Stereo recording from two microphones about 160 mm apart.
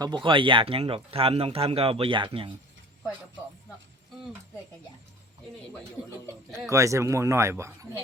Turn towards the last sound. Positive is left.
turn(degrees=-15)  # may be behind; listen again after turning